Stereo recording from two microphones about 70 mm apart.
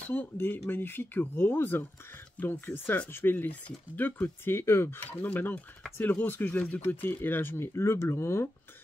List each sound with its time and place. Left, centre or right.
0.1 s speech: left
5.1 s speech: left